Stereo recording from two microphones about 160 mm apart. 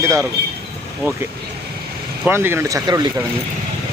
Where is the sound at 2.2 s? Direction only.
15° right (ahead or behind).